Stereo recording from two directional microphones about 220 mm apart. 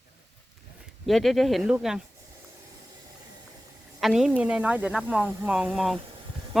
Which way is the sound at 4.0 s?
Centre (ahead or behind).